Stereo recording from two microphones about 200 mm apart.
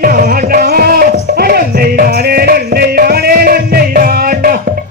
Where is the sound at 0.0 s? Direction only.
45° right (ahead or behind).